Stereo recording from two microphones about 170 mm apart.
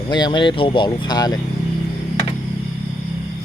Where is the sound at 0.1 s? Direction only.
25° left (ahead or behind).